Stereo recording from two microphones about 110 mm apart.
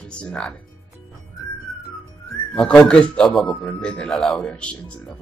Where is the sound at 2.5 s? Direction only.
5° left (ahead or behind).